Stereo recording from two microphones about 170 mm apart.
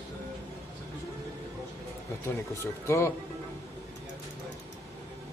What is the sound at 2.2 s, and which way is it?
Speech, 15° left (ahead or behind).